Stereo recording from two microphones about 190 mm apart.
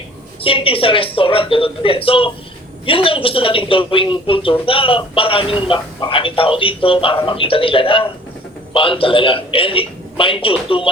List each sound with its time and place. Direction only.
0.4 s a man's voice: 30° left (ahead or behind)